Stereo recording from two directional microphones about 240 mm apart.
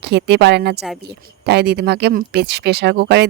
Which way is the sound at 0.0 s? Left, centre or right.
Right.